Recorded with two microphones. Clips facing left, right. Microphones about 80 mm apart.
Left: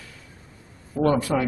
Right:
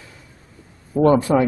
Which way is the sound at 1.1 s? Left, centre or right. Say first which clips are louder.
Right 7 dB; right.